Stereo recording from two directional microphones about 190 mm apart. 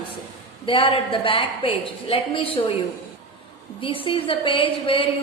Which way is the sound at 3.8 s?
30° left (ahead or behind).